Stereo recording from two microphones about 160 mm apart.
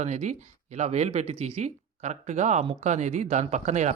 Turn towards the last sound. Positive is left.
turn(degrees=-45)  # may be behind; listen again after turning